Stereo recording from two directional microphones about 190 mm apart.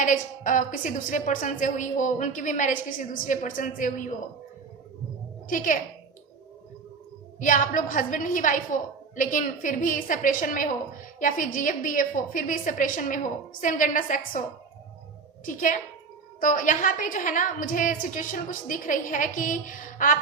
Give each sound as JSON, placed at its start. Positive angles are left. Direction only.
{"t": 0.0, "sound": "a woman's voice", "side_deg": 45}
{"t": 5.5, "sound": "a woman's voice", "side_deg": 45}
{"t": 7.3, "sound": "a woman's voice", "side_deg": 45}
{"t": 15.4, "sound": "a woman's voice", "side_deg": 45}